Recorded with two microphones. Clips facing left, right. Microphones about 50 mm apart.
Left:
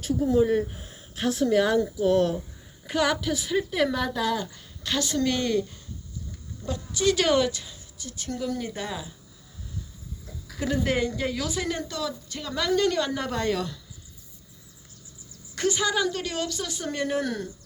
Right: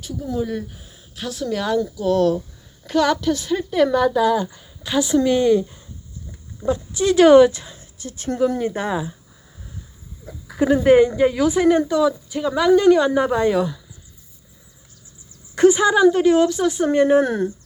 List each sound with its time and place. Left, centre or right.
0.0 s speech: left
2.8 s a woman's voice: centre; by 9.1 s right
10.2 s speech: right
15.5 s speech: right